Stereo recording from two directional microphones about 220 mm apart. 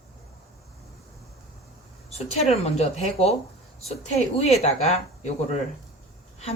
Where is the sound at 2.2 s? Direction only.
30° left (ahead or behind).